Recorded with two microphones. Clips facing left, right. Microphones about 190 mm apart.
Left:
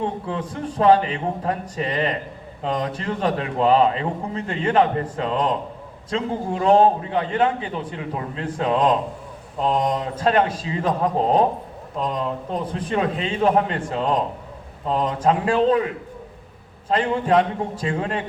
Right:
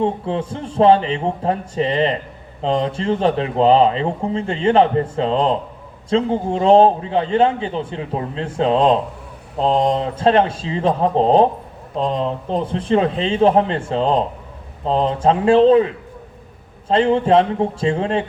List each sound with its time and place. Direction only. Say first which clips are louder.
0.0 s a man's voice: right 6 dB; 25° right (ahead or behind)
16.9 s a man's voice: right 5 dB; 25° right (ahead or behind)